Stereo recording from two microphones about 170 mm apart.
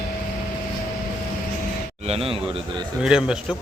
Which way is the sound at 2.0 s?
35° right (ahead or behind).